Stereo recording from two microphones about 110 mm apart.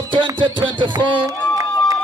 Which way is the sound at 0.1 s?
45° right (ahead or behind).